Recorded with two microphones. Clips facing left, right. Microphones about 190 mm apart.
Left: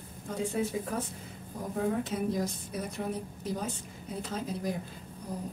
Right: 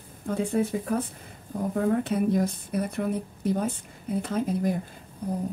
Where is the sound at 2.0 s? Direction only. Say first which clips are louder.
Right 7 dB; 60° right (ahead or behind).